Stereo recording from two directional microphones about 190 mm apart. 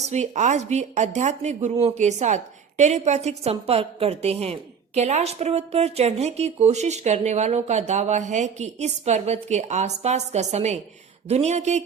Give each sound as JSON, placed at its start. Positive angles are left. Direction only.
{"t": 0.0, "sound": "a woman's voice", "side_deg": -35}